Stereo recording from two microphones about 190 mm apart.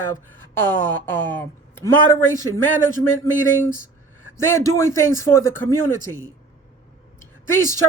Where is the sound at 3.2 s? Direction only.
10° left (ahead or behind).